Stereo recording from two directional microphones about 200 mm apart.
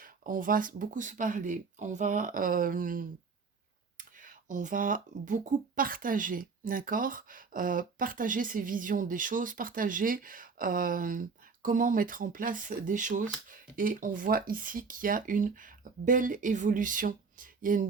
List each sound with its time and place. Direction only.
0.0 s speech: 45° right (ahead or behind)